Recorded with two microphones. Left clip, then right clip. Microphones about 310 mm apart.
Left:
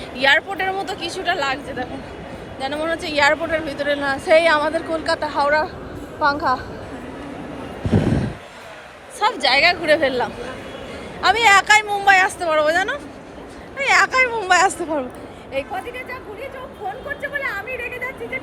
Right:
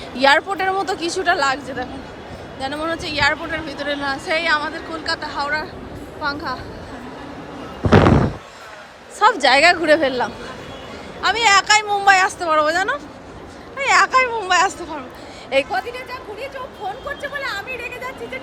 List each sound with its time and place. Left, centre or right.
0.2 s a woman's voice: centre
9.1 s a woman's voice: centre
15.5 s a woman's voice: right
15.9 s a sound: centre
17.3 s a woman's voice: centre